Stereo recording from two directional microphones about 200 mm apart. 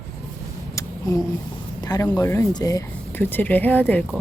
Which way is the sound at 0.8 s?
15° left (ahead or behind).